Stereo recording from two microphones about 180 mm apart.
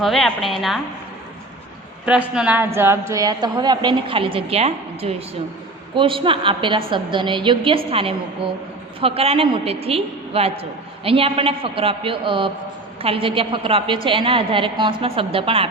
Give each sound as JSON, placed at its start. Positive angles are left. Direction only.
{"t": 0.0, "sound": "a woman's voice", "side_deg": 0}
{"t": 2.0, "sound": "a woman's voice", "side_deg": -5}